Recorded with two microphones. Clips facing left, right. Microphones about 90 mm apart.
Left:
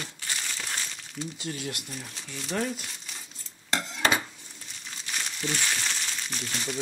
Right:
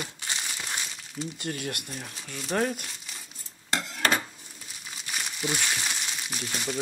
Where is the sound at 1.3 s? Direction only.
55° right (ahead or behind).